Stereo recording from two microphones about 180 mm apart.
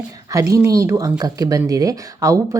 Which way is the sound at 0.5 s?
15° right (ahead or behind).